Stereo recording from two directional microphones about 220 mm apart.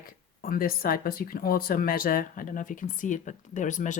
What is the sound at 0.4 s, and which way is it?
Speech, 40° left (ahead or behind).